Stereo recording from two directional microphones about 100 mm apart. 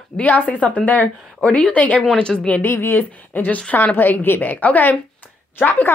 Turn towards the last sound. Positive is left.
turn(degrees=20)  # may be behind; listen again after turning